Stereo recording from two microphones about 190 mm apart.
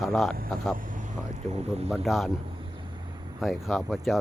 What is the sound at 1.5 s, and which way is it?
Speech, 35° right (ahead or behind).